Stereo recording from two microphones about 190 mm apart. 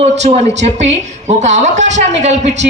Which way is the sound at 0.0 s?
35° right (ahead or behind).